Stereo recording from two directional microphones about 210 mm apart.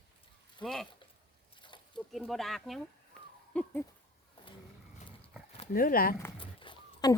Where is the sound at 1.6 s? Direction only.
20° left (ahead or behind).